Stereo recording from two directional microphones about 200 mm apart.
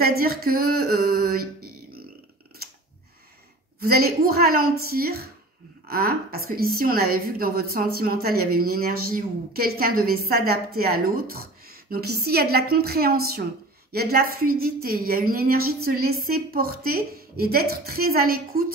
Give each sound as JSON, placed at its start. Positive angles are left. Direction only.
{"t": 0.0, "sound": "a woman's voice", "side_deg": -50}
{"t": 3.8, "sound": "a woman's voice", "side_deg": -50}